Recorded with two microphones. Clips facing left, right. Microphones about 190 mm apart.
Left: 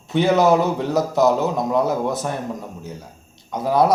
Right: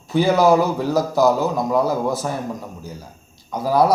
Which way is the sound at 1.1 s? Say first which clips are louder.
Even; 20° left (ahead or behind).